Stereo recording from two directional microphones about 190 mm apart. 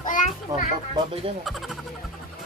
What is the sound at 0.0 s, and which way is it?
Children playing, 45° left (ahead or behind).